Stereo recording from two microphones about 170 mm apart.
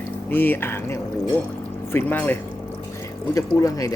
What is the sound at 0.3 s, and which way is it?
Speech, 10° left (ahead or behind).